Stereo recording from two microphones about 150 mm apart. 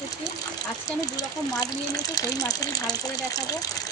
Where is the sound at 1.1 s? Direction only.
25° left (ahead or behind).